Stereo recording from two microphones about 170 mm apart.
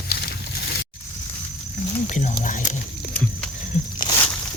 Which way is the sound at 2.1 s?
50° left (ahead or behind).